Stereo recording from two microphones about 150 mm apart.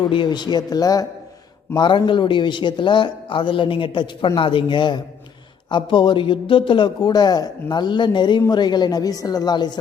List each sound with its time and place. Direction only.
0.1 s a man's voice: 30° left (ahead or behind)